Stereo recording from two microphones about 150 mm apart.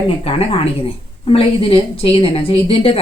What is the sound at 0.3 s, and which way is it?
A woman's voice, 40° left (ahead or behind).